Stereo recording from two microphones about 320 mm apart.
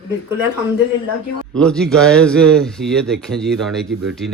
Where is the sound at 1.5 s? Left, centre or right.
Centre.